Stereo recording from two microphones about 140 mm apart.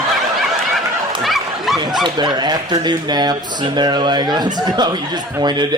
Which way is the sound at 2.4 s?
30° right (ahead or behind).